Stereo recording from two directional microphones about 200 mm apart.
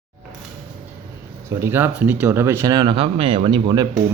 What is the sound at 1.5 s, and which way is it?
A man's voice, 10° right (ahead or behind).